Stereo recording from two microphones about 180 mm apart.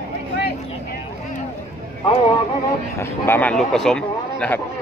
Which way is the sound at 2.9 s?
15° left (ahead or behind).